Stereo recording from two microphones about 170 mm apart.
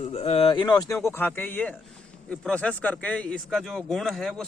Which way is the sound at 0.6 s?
20° left (ahead or behind).